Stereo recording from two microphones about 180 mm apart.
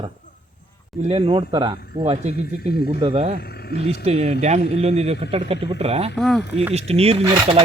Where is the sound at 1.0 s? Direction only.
30° right (ahead or behind).